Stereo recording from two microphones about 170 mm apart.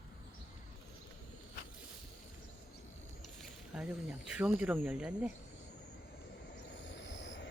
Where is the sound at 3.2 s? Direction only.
Centre (ahead or behind).